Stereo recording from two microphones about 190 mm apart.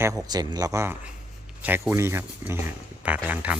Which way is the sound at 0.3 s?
20° right (ahead or behind).